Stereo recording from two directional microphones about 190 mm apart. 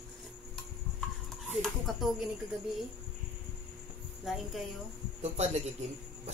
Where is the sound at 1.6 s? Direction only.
Centre (ahead or behind).